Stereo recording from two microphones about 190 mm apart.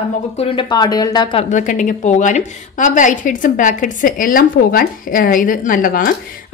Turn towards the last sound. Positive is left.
turn(degrees=45)  # may be behind; listen again after turning